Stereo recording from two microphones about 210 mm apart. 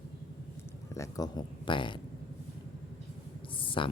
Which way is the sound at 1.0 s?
15° left (ahead or behind).